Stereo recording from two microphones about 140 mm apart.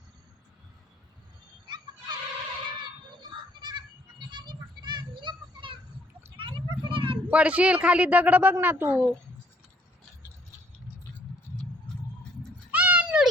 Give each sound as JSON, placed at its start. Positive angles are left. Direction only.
{"t": 1.6, "sound": "fowl", "side_deg": -30}
{"t": 2.8, "sound": "a sound", "side_deg": -30}
{"t": 7.3, "sound": "speech", "side_deg": -10}
{"t": 12.7, "sound": "sheep", "side_deg": -10}